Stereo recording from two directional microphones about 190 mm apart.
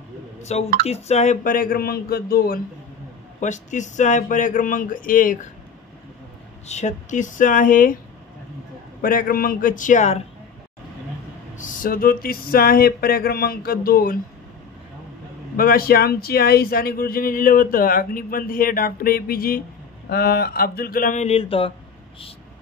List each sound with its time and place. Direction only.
0.4 s speech: 35° left (ahead or behind); by 2.6 s 50° left (ahead or behind)
3.3 s speech: 40° left (ahead or behind)
6.7 s speech: 40° left (ahead or behind)
9.0 s speech: 50° left (ahead or behind)
11.5 s speech: 45° left (ahead or behind)
15.5 s speech: 50° left (ahead or behind); by 21.7 s 30° left (ahead or behind)